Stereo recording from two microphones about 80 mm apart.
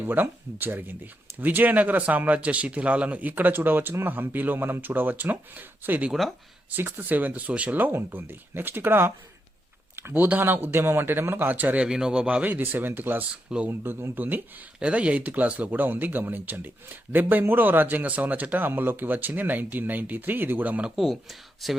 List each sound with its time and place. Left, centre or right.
0.0 s speech: right
9.9 s a sound: right
10.2 s speech: right
13.3 s speech: centre
13.7 s speech: right
20.9 s speech: centre